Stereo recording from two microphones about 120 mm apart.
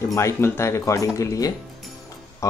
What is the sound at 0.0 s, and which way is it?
Speech, 25° left (ahead or behind).